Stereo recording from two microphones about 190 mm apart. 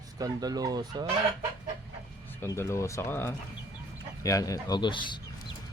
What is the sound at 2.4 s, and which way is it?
Speech, 15° left (ahead or behind).